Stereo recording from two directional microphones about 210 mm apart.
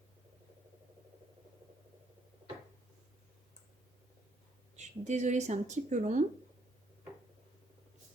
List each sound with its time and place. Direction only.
4.8 s speech: 35° right (ahead or behind)